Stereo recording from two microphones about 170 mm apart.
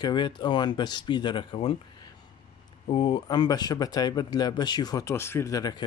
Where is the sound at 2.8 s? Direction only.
30° left (ahead or behind).